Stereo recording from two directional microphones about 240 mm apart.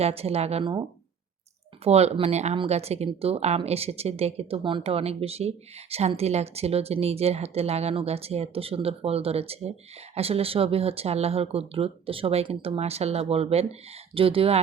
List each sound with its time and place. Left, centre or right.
0.0 s speech: right